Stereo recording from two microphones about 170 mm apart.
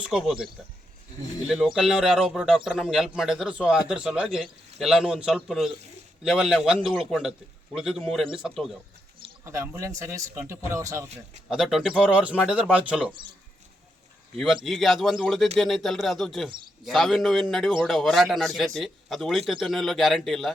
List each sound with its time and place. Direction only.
0.0 s a man's voice: 5° right (ahead or behind)
9.4 s speech: 15° right (ahead or behind)
11.4 s a man's voice: centre (ahead or behind)
14.3 s a man's voice: centre (ahead or behind)